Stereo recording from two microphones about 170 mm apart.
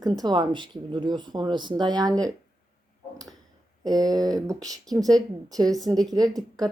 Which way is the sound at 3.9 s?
20° right (ahead or behind).